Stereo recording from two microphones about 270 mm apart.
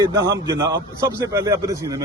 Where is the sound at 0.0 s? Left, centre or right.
Centre.